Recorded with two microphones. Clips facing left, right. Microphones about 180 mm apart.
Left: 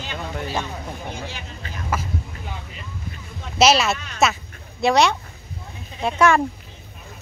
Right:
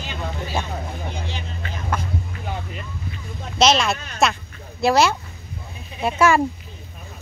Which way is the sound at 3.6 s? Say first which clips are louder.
Left 1 dB; 5° left (ahead or behind).